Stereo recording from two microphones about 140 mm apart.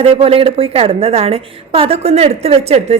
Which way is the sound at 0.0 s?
40° right (ahead or behind).